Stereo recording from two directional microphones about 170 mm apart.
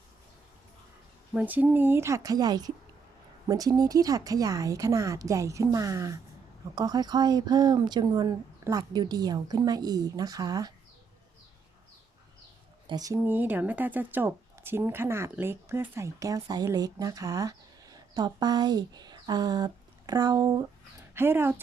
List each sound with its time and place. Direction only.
1.3 s a woman's voice: 10° right (ahead or behind)
12.9 s a woman's voice: 20° right (ahead or behind)